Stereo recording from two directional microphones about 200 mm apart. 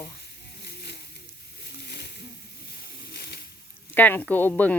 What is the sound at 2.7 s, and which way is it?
Snake, 55° left (ahead or behind).